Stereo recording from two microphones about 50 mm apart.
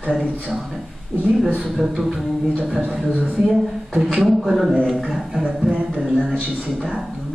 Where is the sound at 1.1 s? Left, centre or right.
Centre.